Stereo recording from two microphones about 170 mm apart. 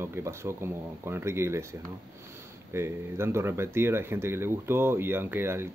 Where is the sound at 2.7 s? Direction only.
15° right (ahead or behind).